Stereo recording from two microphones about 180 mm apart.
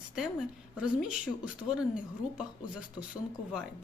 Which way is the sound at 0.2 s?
Centre (ahead or behind).